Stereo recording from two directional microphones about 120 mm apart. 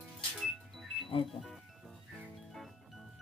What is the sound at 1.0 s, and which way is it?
Music, 45° left (ahead or behind).